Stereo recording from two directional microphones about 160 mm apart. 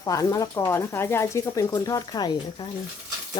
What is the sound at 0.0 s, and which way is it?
Speech, 20° left (ahead or behind).